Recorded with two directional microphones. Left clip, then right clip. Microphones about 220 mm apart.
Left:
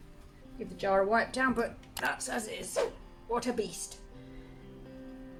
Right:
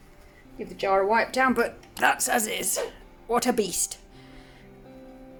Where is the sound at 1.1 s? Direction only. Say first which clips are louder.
Right 7 dB; 40° right (ahead or behind).